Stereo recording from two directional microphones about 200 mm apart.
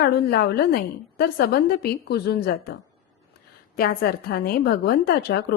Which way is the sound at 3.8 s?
50° left (ahead or behind).